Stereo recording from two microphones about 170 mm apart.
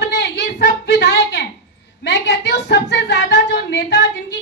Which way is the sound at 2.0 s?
85° left.